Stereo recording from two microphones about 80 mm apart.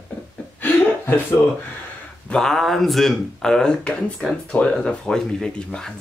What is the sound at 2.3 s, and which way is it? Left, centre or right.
Speech, centre.